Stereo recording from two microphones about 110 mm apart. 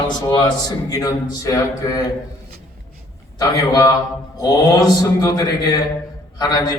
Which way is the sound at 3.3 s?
35° left (ahead or behind).